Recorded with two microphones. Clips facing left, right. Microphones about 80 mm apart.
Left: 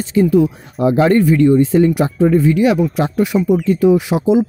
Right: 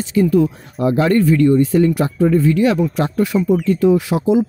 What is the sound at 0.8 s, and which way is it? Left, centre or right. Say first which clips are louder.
Speech: left 2 dB; left.